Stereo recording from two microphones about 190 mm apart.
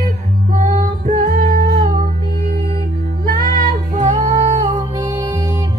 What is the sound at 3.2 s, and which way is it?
Female singing, 45° right (ahead or behind).